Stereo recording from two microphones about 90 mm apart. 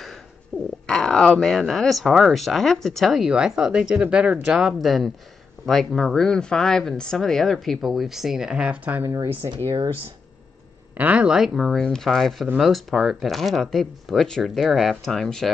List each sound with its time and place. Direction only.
0.5 s a sound: 5° left (ahead or behind)
0.8 s speech: 5° left (ahead or behind); by 9.1 s 20° right (ahead or behind)
9.4 s speech: 45° right (ahead or behind)
11.0 s speech: 15° right (ahead or behind); by 15.5 s 5° left (ahead or behind)